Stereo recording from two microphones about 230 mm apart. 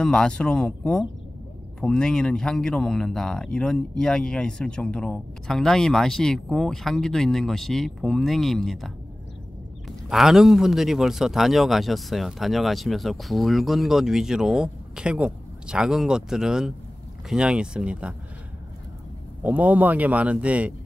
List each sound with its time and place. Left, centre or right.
0.0 s speech: centre
19.4 s speech: centre